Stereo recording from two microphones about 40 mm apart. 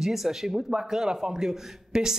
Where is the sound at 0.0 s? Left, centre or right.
Centre.